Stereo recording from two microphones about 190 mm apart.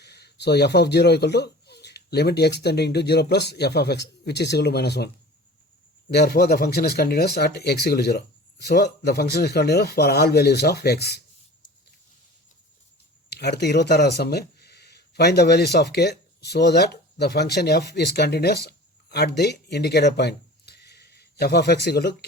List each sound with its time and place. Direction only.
0.0 s a man's voice: 60° left (ahead or behind)
13.3 s speech: 60° left (ahead or behind)